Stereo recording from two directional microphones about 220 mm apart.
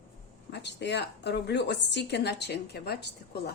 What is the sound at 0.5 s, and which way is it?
A woman's voice, 50° left (ahead or behind).